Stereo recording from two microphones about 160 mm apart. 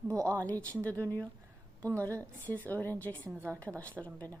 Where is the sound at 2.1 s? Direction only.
10° left (ahead or behind).